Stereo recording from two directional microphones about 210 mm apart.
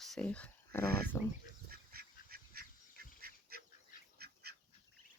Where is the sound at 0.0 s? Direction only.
5° left (ahead or behind).